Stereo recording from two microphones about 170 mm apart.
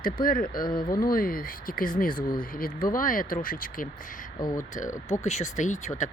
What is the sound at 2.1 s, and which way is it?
Speech, 25° left (ahead or behind).